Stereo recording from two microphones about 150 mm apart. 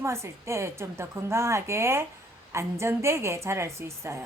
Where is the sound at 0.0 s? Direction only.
20° right (ahead or behind).